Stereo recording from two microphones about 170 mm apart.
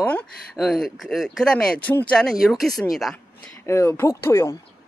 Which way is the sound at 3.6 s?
15° left (ahead or behind).